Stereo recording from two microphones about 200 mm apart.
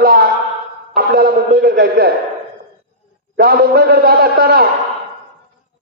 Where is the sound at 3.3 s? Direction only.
50° right (ahead or behind).